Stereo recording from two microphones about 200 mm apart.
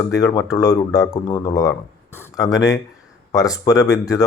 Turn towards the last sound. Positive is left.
turn(degrees=15)  # may be behind; listen again after turning